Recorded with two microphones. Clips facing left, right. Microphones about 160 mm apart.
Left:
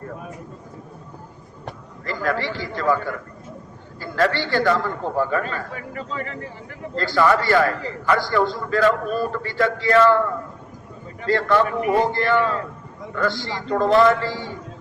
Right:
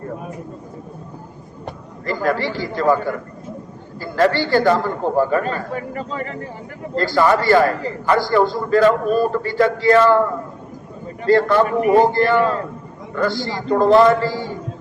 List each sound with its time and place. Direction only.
2.0 s a man's voice: 35° right (ahead or behind)
11.3 s a man's voice: 35° right (ahead or behind)